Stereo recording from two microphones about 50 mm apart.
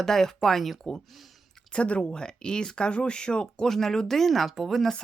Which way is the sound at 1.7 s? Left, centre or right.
Left.